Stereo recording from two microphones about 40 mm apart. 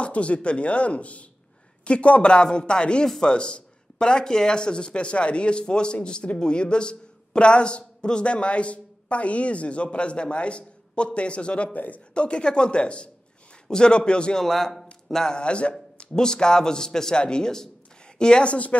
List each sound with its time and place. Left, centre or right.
0.0 s speech: left
11.7 s speech: left
12.1 s speech: left
14.4 s a man's voice: centre
15.3 s a man's voice: left
18.5 s speech: left